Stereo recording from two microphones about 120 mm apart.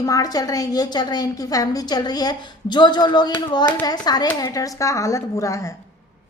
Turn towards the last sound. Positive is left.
turn(degrees=25)  # may be behind; listen again after turning